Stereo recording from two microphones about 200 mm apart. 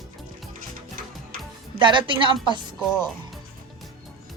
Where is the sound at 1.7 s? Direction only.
25° right (ahead or behind).